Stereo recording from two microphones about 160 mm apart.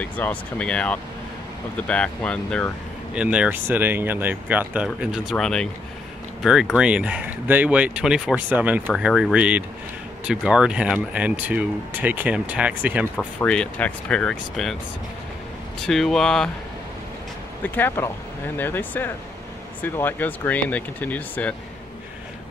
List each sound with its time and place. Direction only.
0.0 s speech: 10° left (ahead or behind)
3.2 s speech: 5° right (ahead or behind)
8.8 s speech: centre (ahead or behind)
13.4 s speech: 5° left (ahead or behind)
15.8 s speech: centre (ahead or behind)
17.6 s speech: 10° left (ahead or behind)